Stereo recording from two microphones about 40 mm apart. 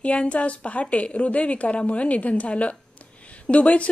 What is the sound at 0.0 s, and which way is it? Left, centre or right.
A woman's voice, left.